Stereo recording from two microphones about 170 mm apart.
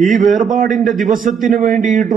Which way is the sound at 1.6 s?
Centre (ahead or behind).